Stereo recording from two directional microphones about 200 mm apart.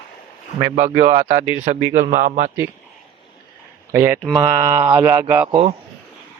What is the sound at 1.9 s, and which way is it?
Speech, 40° right (ahead or behind).